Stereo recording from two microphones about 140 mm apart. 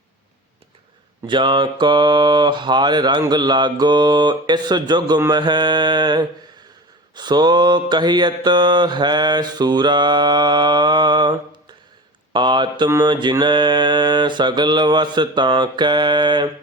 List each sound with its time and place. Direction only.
1.3 s mantra: 35° right (ahead or behind)